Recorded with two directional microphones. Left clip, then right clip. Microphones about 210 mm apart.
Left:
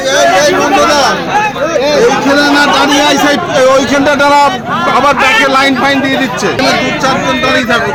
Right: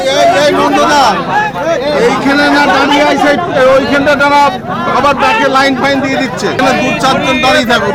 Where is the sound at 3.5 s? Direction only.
40° left (ahead or behind).